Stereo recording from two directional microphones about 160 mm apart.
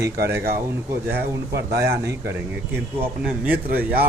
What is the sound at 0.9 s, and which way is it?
Speech, 15° right (ahead or behind).